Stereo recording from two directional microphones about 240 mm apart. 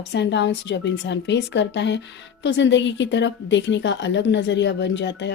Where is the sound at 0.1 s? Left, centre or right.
Left.